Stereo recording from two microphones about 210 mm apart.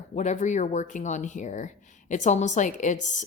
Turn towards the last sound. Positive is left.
turn(degrees=35)  # may be behind; listen again after turning